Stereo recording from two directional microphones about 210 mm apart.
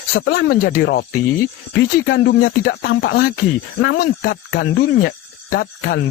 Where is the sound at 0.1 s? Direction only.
45° left (ahead or behind).